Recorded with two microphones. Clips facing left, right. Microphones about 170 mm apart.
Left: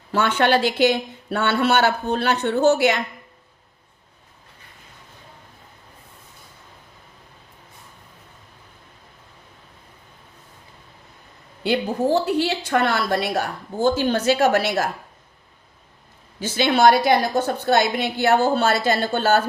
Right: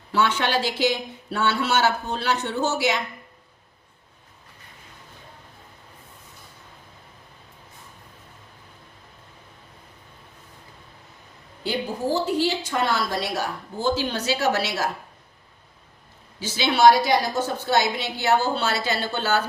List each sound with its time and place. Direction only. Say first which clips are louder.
0.1 s a woman's voice: left 4 dB; 55° left (ahead or behind)
11.6 s a woman's voice: left 5 dB; 65° left (ahead or behind)
16.4 s a woman's voice: left 1 dB; 55° left (ahead or behind)